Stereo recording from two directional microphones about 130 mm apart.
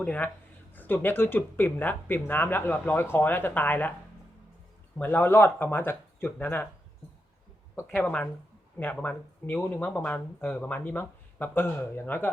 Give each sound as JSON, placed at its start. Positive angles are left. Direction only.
{"t": 0.0, "sound": "speech", "side_deg": 10}
{"t": 4.9, "sound": "speech", "side_deg": 15}
{"t": 7.9, "sound": "speech", "side_deg": 10}